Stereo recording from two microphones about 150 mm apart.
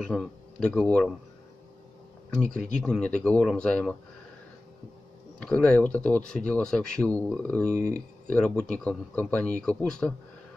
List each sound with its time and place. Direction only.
0.0 s speech: 5° left (ahead or behind)
2.3 s speech: 5° left (ahead or behind)
5.4 s speech: 5° left (ahead or behind)